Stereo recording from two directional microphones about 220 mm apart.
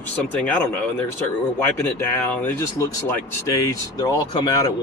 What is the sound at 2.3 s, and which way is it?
Speech, 15° left (ahead or behind).